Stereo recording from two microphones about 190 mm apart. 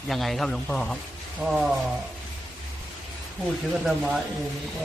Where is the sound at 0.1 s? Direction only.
Centre (ahead or behind).